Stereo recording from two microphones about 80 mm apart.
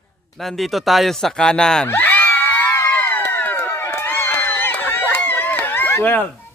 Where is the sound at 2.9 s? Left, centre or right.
Left.